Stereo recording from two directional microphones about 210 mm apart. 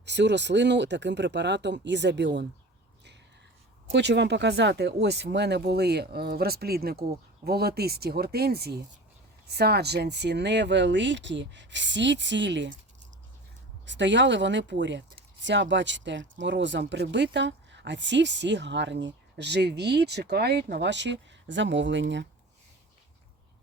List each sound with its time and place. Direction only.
0.0 s speech: 55° right (ahead or behind)
3.9 s speech: 55° right (ahead or behind)
13.8 s speech: 60° right (ahead or behind)